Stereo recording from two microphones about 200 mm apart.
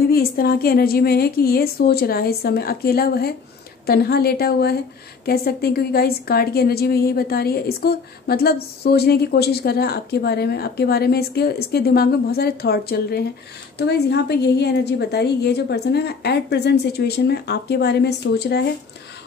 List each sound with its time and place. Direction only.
0.1 s a woman's voice: 50° left (ahead or behind)